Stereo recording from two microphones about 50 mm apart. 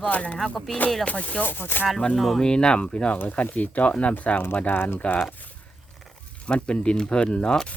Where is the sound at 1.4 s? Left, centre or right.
Left.